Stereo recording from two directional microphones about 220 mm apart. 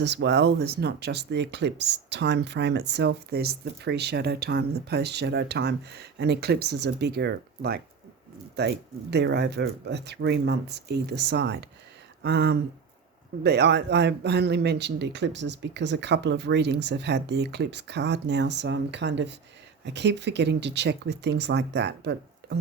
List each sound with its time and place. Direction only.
0.0 s speech: 50° right (ahead or behind)